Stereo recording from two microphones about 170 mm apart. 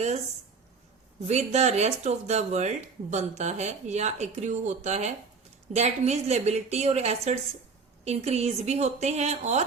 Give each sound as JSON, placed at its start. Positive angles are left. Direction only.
{"t": 1.3, "sound": "speech", "side_deg": -40}